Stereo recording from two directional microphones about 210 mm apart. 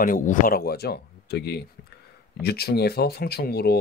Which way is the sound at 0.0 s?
40° left (ahead or behind).